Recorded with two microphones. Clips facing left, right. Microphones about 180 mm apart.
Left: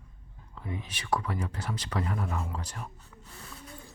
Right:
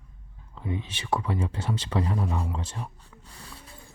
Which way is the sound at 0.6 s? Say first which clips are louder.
Right 5 dB; 25° right (ahead or behind).